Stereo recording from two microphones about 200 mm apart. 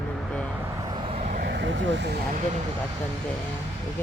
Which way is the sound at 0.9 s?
30° right (ahead or behind).